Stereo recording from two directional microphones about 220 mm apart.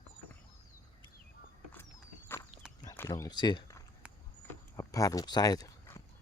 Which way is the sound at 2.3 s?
10° left (ahead or behind).